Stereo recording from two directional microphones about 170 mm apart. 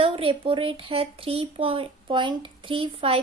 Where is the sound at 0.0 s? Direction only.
30° right (ahead or behind).